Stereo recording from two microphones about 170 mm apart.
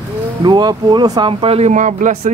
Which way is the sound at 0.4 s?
25° right (ahead or behind).